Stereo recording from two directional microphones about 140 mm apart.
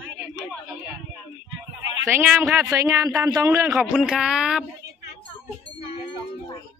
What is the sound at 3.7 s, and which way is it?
Speech, 5° right (ahead or behind).